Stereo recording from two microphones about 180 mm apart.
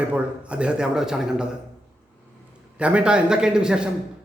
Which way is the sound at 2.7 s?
5° right (ahead or behind).